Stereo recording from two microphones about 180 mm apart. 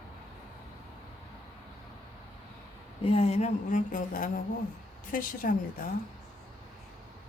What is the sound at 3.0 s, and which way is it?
A woman's voice, 35° left (ahead or behind).